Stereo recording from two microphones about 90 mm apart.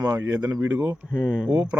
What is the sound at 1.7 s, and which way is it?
Speech, 20° right (ahead or behind).